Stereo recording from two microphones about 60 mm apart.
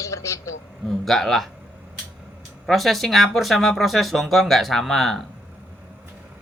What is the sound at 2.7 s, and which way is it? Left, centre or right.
Speech, centre.